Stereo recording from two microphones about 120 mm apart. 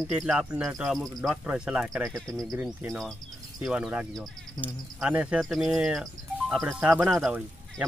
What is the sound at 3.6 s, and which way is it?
Speech, 5° right (ahead or behind).